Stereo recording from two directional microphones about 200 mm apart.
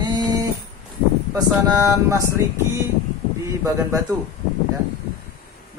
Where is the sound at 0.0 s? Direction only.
20° right (ahead or behind).